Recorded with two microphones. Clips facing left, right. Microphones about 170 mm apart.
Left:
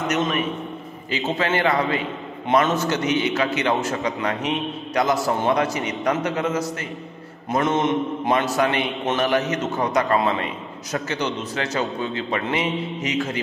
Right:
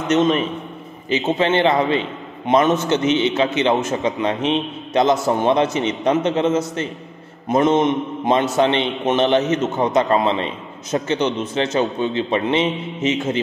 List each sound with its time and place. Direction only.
0.1 s a man's voice: 25° right (ahead or behind)